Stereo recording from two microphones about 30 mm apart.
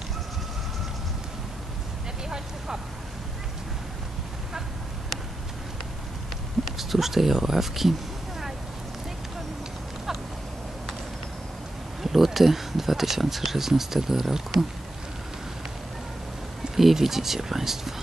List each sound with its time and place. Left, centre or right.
2.2 s vehicle: right
6.8 s speech: centre
12.0 s speech: centre
16.7 s speech: centre